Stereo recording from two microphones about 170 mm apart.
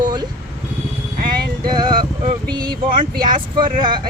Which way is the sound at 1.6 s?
25° right (ahead or behind).